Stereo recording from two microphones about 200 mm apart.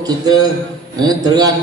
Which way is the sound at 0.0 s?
20° right (ahead or behind).